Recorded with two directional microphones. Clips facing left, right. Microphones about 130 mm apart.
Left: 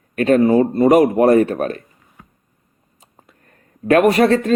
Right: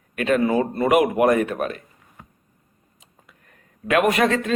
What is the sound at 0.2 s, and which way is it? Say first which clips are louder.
Speech: left 6 dB; 35° left (ahead or behind).